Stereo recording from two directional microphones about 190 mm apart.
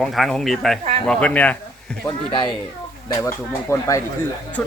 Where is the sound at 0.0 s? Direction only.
Centre (ahead or behind).